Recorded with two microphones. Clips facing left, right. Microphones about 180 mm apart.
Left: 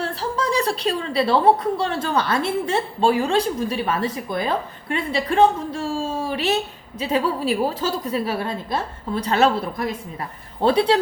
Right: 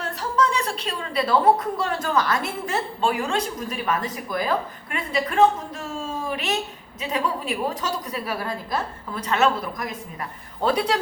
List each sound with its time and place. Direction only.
0.0 s a woman's voice: 30° left (ahead or behind)